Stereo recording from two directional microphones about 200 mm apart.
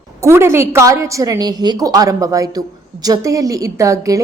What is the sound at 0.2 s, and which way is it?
A woman's voice, 15° right (ahead or behind).